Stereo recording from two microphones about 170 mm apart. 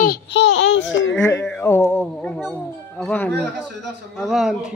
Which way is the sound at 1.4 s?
10° left (ahead or behind).